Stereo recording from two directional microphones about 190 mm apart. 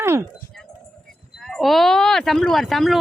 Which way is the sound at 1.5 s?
Centre (ahead or behind).